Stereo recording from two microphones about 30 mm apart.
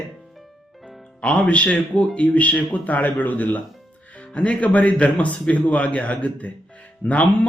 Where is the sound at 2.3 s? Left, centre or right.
Left.